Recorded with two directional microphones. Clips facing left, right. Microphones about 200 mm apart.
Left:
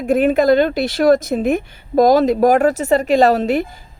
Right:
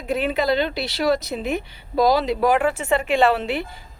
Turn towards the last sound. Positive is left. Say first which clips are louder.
# left 6 dB
turn(degrees=45)  # may be behind; listen again after turning